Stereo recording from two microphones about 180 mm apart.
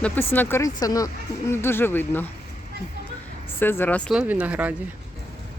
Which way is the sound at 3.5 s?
10° left (ahead or behind).